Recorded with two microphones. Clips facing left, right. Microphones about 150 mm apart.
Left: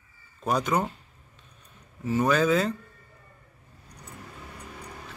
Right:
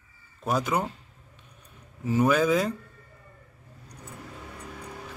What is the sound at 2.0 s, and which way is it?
Speech, 10° right (ahead or behind).